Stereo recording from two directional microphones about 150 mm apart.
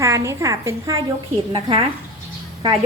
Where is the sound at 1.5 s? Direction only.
40° right (ahead or behind).